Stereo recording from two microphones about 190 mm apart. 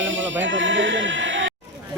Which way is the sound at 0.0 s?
80° right.